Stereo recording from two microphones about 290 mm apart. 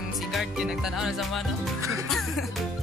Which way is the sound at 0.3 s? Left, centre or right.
Centre.